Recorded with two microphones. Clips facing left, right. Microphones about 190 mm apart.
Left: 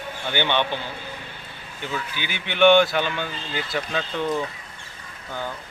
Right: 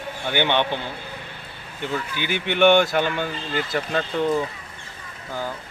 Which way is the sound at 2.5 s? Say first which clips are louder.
Left 1 dB; 15° right (ahead or behind).